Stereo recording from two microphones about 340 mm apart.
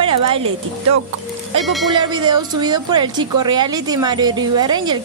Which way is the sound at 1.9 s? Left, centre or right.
Centre.